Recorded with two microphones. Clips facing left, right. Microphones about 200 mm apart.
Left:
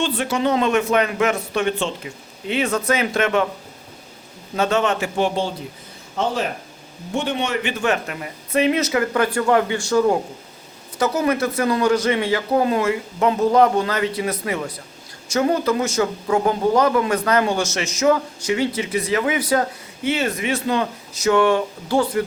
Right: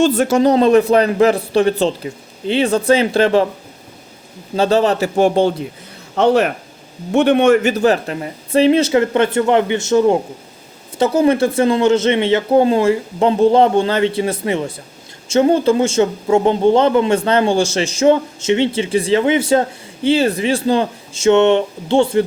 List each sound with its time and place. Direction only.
0.0 s a man's voice: 45° right (ahead or behind)
4.5 s a man's voice: 35° right (ahead or behind)
6.1 s a man's voice: 70° right (ahead or behind); by 22.2 s 25° right (ahead or behind)